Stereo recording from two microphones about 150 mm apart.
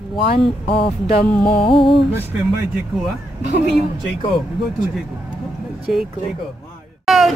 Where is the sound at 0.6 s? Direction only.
35° left (ahead or behind).